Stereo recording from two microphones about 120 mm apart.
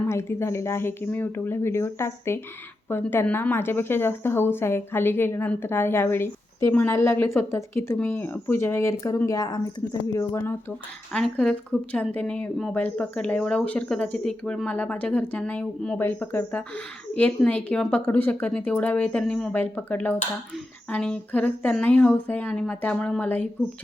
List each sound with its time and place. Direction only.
0.0 s speech: 20° left (ahead or behind)
11.1 s speech: 5° left (ahead or behind)